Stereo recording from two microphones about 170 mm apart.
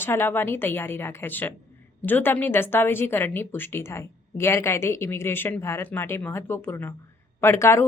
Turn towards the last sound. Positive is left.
turn(degrees=15)  # may be behind; listen again after turning